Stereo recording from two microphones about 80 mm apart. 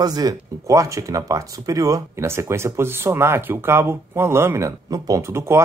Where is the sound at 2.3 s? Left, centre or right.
Right.